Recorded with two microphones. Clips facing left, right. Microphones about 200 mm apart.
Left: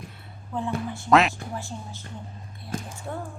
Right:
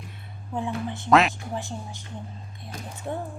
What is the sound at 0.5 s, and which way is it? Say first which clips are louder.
Speech: even; 15° right (ahead or behind).